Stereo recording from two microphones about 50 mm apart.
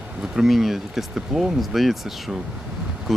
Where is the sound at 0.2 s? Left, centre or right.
Centre.